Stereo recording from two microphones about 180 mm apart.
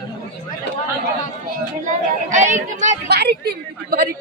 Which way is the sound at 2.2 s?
45° right (ahead or behind).